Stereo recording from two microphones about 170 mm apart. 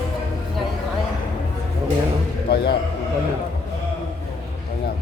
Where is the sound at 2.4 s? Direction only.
65° left (ahead or behind).